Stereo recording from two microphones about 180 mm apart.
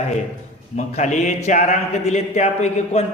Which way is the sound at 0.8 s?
40° left (ahead or behind).